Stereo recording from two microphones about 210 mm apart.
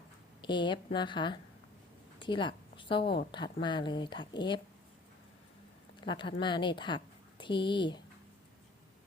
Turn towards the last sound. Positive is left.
turn(degrees=20)  # may be behind; listen again after turning